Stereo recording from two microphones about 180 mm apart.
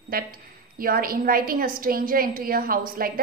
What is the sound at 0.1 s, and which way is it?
A woman's voice, 55° right (ahead or behind).